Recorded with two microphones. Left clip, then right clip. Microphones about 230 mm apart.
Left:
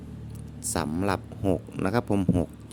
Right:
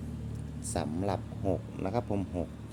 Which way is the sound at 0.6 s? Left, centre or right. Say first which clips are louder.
Left 5 dB; left.